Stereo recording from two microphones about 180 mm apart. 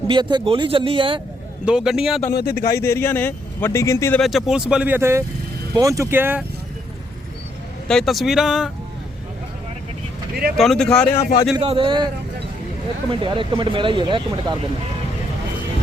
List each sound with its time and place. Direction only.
0.1 s speech: 25° right (ahead or behind)
1.6 s speech: 5° right (ahead or behind)
2.3 s speech: 55° left (ahead or behind)
2.7 s speech: 15° left (ahead or behind)
4.2 s speech: centre (ahead or behind)
7.9 s speech: centre (ahead or behind)
10.6 s speech: centre (ahead or behind)
11.1 s speech: 15° left (ahead or behind)
11.5 s speech: 30° right (ahead or behind)